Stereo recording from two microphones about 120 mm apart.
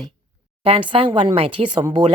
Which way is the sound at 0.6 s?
50° right (ahead or behind).